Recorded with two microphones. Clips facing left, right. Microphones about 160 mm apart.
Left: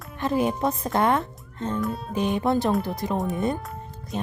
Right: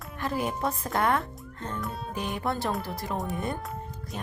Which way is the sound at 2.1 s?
20° left (ahead or behind).